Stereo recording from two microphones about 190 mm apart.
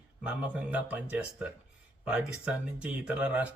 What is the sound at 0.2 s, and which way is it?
A man's voice, 5° right (ahead or behind).